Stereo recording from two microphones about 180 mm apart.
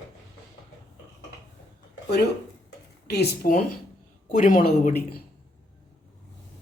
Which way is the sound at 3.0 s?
65° left (ahead or behind).